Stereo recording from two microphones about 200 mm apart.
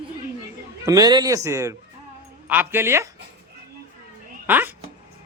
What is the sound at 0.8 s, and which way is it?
A man's voice, 20° right (ahead or behind).